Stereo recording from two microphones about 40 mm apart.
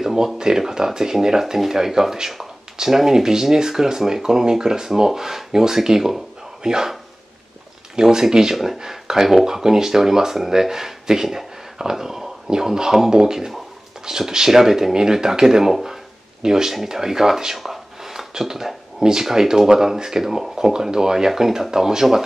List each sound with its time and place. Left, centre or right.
0.0 s a sound: centre
0.4 s speech: centre
7.9 s speech: centre